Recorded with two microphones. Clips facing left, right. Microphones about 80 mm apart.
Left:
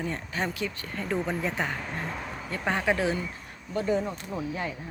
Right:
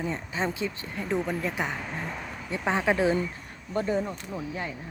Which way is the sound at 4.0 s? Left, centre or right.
Centre.